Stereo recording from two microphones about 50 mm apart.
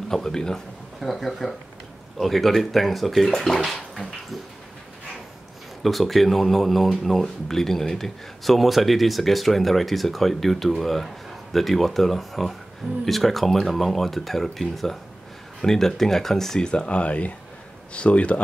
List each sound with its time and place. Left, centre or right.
0.1 s speech: centre
5.8 s speech: centre; by 18.4 s left